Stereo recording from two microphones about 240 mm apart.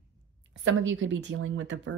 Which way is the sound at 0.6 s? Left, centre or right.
Right.